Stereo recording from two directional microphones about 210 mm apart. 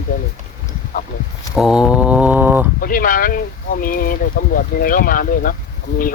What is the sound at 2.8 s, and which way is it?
Speech, 40° left (ahead or behind).